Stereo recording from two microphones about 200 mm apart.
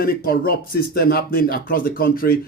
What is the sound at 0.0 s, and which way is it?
Speech, 45° left (ahead or behind).